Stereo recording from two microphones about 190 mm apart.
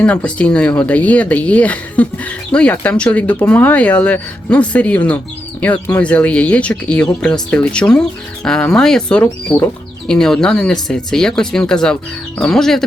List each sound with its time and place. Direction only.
0.0 s speech: 5° left (ahead or behind)